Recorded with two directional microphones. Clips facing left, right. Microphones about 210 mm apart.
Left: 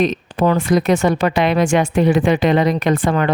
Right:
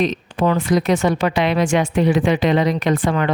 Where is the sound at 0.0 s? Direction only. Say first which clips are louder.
Left 2 dB; 45° left (ahead or behind).